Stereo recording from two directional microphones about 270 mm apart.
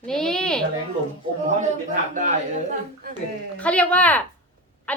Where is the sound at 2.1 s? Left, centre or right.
Right.